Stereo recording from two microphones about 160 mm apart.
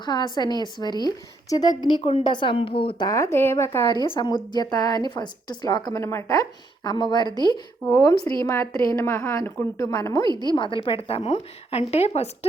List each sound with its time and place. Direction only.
0.0 s a woman's voice: 25° left (ahead or behind)
3.1 s speech: 20° left (ahead or behind)
3.9 s a woman's voice: 30° left (ahead or behind)